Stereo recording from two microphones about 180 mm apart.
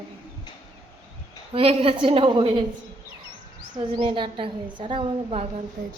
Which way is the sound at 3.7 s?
30° right (ahead or behind).